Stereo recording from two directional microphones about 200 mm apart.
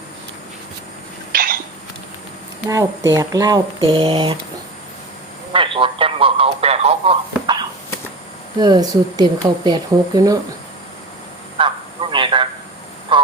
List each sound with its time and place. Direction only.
1.3 s cough: 45° right (ahead or behind)
2.6 s speech: 15° right (ahead or behind)
5.5 s speech: 25° right (ahead or behind)
12.1 s a sound: 25° right (ahead or behind)
13.1 s honk: 25° right (ahead or behind)